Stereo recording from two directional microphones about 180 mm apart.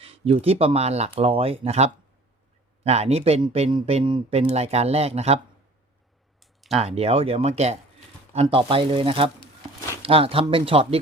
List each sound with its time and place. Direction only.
0.0 s speech: 35° right (ahead or behind)
6.4 s a sound: centre (ahead or behind)
6.7 s speech: 35° right (ahead or behind)